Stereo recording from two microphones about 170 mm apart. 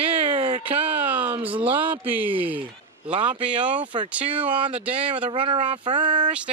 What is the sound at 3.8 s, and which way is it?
Speech, 25° right (ahead or behind).